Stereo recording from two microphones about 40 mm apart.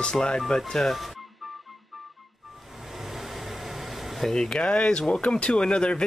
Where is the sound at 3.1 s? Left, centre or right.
Centre.